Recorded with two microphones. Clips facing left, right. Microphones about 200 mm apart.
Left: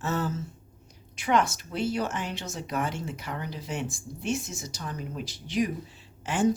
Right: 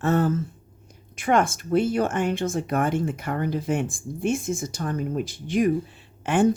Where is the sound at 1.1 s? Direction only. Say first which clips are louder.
Right 4 dB; 50° right (ahead or behind).